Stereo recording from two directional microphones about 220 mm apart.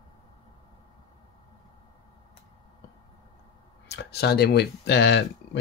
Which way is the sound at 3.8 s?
50° left (ahead or behind).